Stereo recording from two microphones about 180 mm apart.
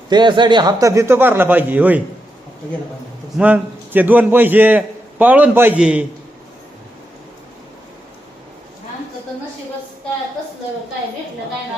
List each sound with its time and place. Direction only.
0.1 s a man's voice: 25° right (ahead or behind); by 2.0 s 10° right (ahead or behind)
3.3 s a man's voice: 10° right (ahead or behind)